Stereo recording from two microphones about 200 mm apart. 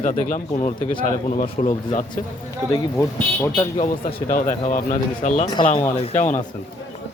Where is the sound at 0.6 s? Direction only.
30° left (ahead or behind).